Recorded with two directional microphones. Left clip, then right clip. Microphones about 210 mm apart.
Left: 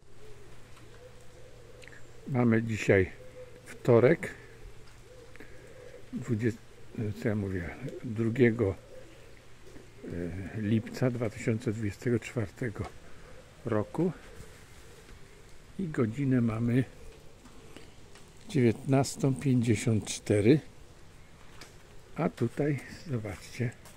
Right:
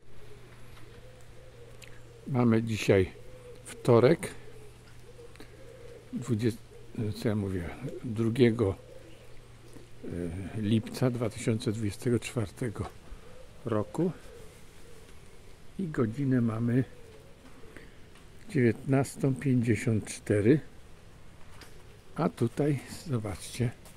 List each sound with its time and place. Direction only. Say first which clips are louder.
2.3 s speech: right 1 dB; 10° right (ahead or behind)
6.5 s speech: right 1 dB; 10° right (ahead or behind)
10.1 s speech: right 1 dB; 10° right (ahead or behind)
15.9 s speech: even; centre (ahead or behind)
18.5 s speech: even; 10° left (ahead or behind)
22.1 s speech: right 1 dB; 15° right (ahead or behind)